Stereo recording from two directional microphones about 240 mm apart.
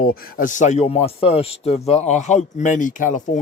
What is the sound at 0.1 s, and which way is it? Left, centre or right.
Speech, left.